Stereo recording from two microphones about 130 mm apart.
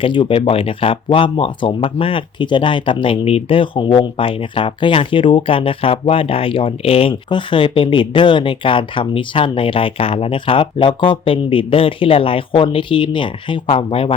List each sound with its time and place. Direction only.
0.0 s speech: 40° left (ahead or behind)